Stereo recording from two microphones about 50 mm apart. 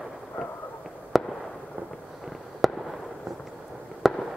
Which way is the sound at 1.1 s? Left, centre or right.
Centre.